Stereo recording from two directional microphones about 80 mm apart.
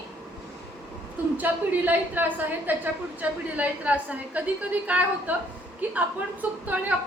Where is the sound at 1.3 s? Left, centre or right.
Right.